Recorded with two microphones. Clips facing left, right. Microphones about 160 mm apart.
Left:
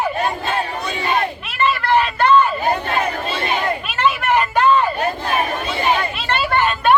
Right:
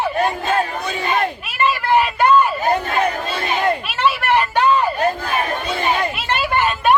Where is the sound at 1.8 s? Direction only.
10° right (ahead or behind).